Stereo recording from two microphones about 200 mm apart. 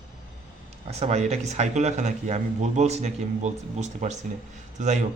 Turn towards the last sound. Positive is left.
turn(degrees=-35)  # may be behind; listen again after turning